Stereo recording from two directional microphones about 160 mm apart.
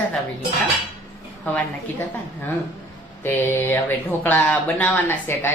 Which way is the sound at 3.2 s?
15° left (ahead or behind).